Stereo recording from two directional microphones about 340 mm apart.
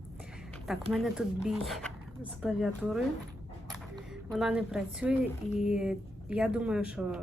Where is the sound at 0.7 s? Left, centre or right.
Centre.